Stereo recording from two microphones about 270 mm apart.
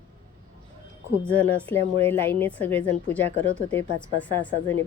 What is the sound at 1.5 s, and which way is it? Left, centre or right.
A woman's voice, centre.